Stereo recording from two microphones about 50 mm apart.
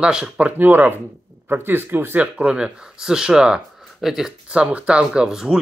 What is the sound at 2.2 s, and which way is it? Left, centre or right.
Speech, right.